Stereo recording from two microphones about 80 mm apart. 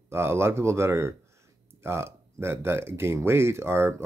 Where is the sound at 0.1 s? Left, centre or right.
Right.